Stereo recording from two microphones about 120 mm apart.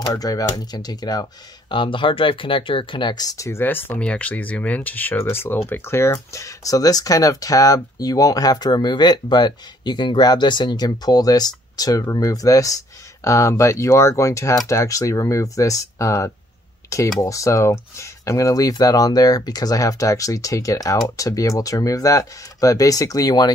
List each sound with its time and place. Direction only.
0.1 s speech: 30° left (ahead or behind)